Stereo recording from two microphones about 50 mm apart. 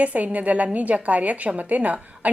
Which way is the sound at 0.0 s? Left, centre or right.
Right.